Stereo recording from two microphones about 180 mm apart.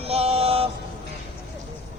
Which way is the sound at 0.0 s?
35° right (ahead or behind).